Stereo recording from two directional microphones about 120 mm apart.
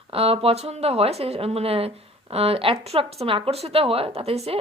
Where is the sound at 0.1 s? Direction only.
55° right (ahead or behind).